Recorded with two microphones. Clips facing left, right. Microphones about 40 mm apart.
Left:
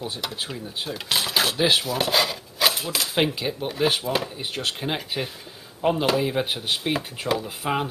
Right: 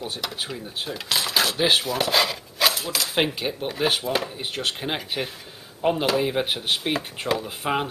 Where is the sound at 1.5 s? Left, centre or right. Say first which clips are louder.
Even; centre.